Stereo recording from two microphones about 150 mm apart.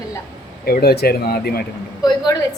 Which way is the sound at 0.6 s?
90° left.